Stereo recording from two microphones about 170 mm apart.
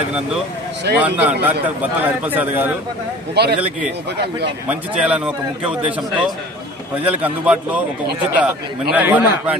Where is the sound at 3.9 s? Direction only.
80° right.